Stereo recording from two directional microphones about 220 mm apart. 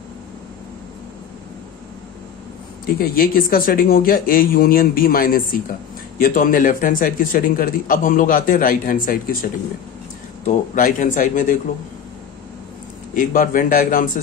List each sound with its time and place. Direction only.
2.9 s a man's voice: 40° left (ahead or behind)
13.1 s a man's voice: 40° left (ahead or behind)